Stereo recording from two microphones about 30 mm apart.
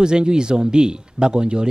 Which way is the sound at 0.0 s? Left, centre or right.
Right.